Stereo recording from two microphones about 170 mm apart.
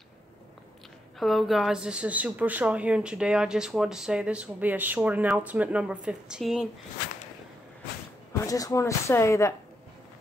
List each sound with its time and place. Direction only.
1.2 s speech: centre (ahead or behind)
8.3 s speech: 20° left (ahead or behind)